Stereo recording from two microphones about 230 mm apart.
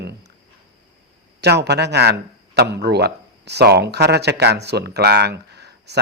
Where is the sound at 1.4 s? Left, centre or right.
Right.